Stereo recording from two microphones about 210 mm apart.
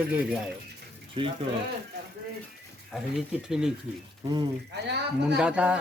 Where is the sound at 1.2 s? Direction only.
25° right (ahead or behind).